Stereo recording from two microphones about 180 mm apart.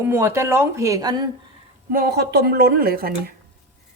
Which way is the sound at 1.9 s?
60° right (ahead or behind).